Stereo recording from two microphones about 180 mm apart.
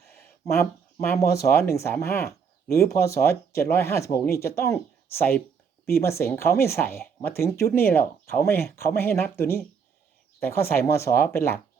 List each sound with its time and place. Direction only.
0.4 s speech: 15° left (ahead or behind)